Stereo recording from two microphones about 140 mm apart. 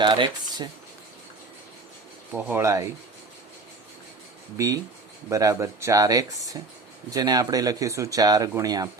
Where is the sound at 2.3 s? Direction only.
15° right (ahead or behind).